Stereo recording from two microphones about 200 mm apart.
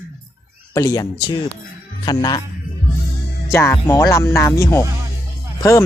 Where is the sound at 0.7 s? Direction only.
15° left (ahead or behind).